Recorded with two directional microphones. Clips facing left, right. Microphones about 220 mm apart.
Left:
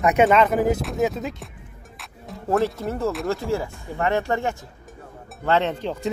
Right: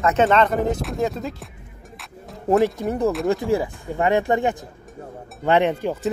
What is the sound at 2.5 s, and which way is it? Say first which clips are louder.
Speech: right 4 dB; 15° right (ahead or behind).